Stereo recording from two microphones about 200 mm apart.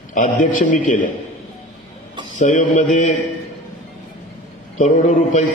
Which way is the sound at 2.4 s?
35° left (ahead or behind).